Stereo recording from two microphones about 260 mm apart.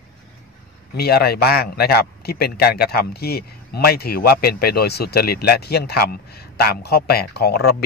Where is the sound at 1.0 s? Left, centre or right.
Left.